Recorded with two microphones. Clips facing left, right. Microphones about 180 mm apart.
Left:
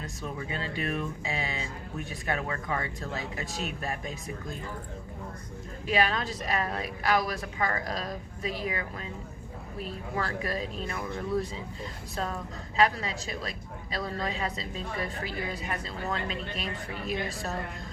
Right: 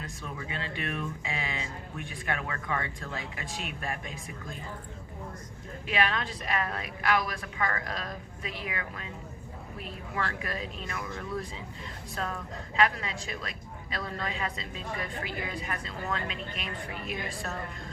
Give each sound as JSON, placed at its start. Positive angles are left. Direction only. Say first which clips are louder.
{"t": 0.3, "sound": "speech", "louder": "left 2 dB", "side_deg": 35}
{"t": 5.9, "sound": "speech", "louder": "left 2 dB", "side_deg": 35}
{"t": 12.7, "sound": "speech", "louder": "left 2 dB", "side_deg": 35}